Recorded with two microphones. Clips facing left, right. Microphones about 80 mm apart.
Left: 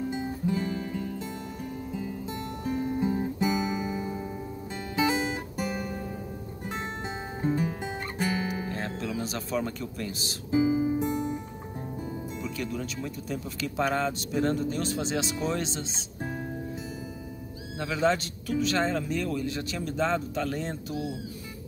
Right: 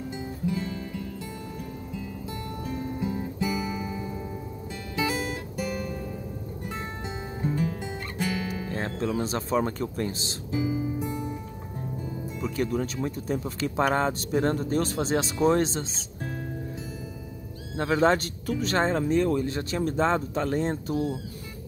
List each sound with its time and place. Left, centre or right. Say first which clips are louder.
0.1 s music: left 1 dB; left
2.6 s guitar: left 4 dB; left
7.4 s music: left 1 dB; left
8.7 s speech: right 4 dB; right
10.5 s music: left 4 dB; left
12.4 s speech: right 8 dB; right
17.7 s speech: right 4 dB; right